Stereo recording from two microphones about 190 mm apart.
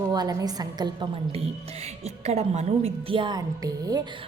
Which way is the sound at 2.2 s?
35° right (ahead or behind).